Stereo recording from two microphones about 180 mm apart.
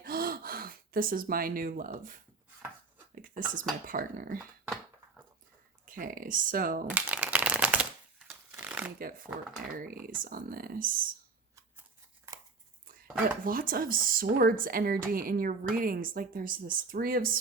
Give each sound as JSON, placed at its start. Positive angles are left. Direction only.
{"t": 0.0, "sound": "gasp", "side_deg": -55}
{"t": 3.2, "sound": "a sound", "side_deg": -50}
{"t": 3.8, "sound": "a woman's voice", "side_deg": -50}
{"t": 4.6, "sound": "a sound", "side_deg": -10}
{"t": 5.8, "sound": "a woman's voice", "side_deg": -50}
{"t": 6.8, "sound": "shuffling cards", "side_deg": -10}
{"t": 9.0, "sound": "a woman's voice", "side_deg": -50}
{"t": 13.4, "sound": "a woman's voice", "side_deg": -50}